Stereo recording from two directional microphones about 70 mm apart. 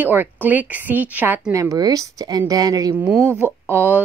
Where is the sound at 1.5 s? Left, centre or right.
Right.